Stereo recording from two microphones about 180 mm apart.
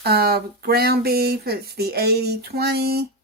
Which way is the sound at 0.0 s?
60° right (ahead or behind).